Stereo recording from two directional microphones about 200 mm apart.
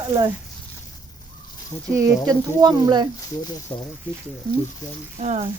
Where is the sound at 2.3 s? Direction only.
20° right (ahead or behind).